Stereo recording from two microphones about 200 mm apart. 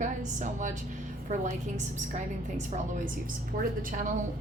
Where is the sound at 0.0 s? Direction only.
35° right (ahead or behind).